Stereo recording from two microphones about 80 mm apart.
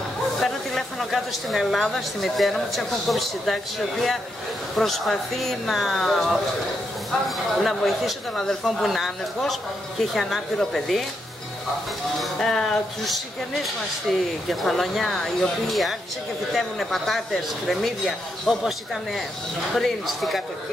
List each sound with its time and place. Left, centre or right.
0.4 s speech: centre
4.7 s speech: centre
12.2 s speech: centre